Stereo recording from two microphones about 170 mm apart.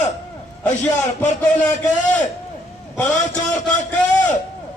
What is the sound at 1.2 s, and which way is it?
Speech, 10° left (ahead or behind).